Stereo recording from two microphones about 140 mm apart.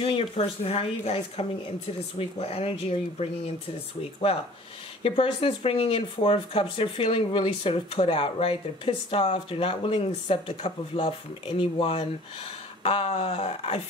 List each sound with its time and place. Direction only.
0.0 s speech: 45° left (ahead or behind)
5.0 s speech: 45° left (ahead or behind)